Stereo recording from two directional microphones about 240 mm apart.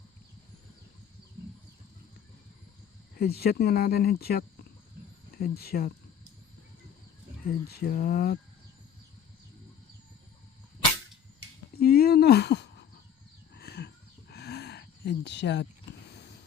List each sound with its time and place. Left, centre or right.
3.2 s speech: left
7.4 s speech: left
11.8 s a sound: left